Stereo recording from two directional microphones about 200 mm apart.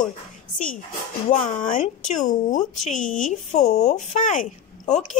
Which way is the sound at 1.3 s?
40° left (ahead or behind).